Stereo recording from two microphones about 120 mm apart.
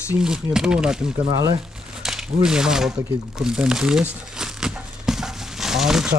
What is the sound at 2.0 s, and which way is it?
Speech, 5° right (ahead or behind).